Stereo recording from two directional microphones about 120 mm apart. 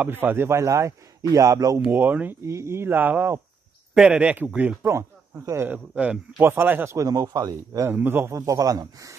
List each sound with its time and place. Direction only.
0.0 s speech: 15° right (ahead or behind)
1.9 s speech: 15° right (ahead or behind)
4.8 s speech: 25° right (ahead or behind)
7.9 s speech: 15° right (ahead or behind)